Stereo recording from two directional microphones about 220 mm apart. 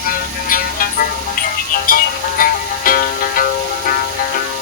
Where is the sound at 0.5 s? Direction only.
40° left (ahead or behind).